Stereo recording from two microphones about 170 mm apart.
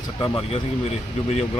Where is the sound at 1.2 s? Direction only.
40° left (ahead or behind).